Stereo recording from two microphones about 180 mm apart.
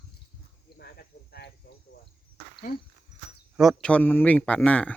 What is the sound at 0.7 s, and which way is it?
Cricket, 60° left (ahead or behind).